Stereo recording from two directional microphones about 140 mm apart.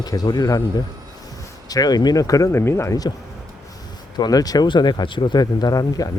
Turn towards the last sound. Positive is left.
turn(degrees=25)  # may be behind; listen again after turning